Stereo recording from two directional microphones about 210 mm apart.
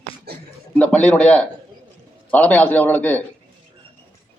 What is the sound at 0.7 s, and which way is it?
A man's voice, 5° left (ahead or behind).